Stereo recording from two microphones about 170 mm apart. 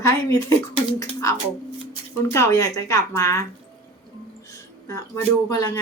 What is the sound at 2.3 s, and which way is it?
A woman's voice, 15° left (ahead or behind).